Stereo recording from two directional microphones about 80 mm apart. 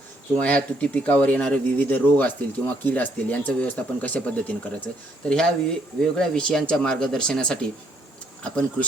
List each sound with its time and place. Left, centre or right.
0.3 s speech: centre